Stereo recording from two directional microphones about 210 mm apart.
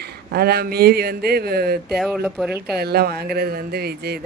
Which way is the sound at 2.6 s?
50° right (ahead or behind).